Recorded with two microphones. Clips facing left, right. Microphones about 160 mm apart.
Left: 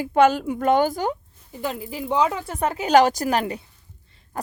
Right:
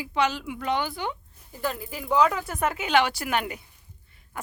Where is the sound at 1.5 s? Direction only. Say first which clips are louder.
Left 2 dB; 20° left (ahead or behind).